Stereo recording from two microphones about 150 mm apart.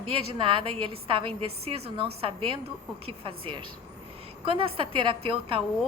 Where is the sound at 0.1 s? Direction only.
35° right (ahead or behind).